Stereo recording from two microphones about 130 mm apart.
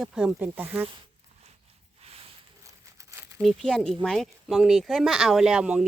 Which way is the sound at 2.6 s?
25° right (ahead or behind).